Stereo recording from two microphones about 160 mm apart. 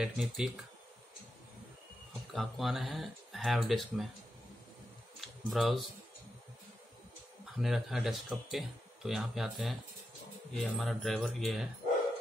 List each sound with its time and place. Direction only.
0.0 s speech: 5° right (ahead or behind)
2.3 s speech: centre (ahead or behind)
5.2 s speech: centre (ahead or behind)
7.5 s speech: centre (ahead or behind)